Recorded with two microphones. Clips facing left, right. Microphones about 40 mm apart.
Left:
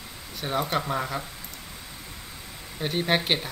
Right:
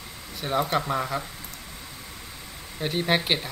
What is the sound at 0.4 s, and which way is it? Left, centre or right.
Speech, centre.